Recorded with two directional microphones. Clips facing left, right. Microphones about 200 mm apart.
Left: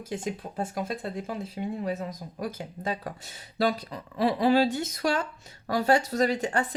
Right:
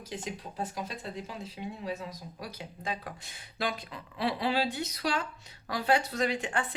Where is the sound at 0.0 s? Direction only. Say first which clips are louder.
Left 6 dB; 50° left (ahead or behind).